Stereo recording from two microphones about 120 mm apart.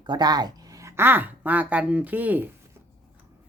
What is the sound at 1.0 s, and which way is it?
Speech, 15° right (ahead or behind).